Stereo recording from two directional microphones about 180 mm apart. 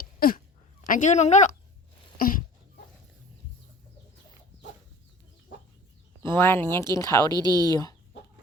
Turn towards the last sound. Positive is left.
turn(degrees=20)  # may be behind; listen again after turning